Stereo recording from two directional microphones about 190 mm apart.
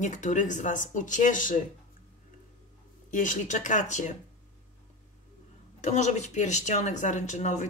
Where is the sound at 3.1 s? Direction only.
40° left (ahead or behind).